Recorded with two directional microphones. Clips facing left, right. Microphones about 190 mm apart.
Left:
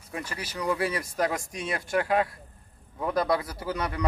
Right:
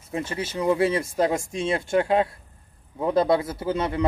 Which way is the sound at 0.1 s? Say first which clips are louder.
Right 7 dB; 25° right (ahead or behind).